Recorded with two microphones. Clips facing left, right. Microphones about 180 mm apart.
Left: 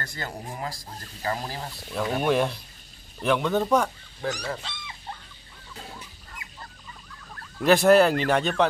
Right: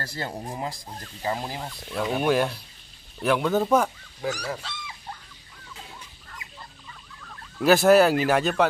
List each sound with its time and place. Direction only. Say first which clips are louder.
0.0 s speech: right 3 dB; 30° right (ahead or behind)
1.2 s speech: right 1 dB; 15° right (ahead or behind)
2.0 s speech: right 1 dB; 5° right (ahead or behind)
7.5 s speech: right 1 dB; centre (ahead or behind)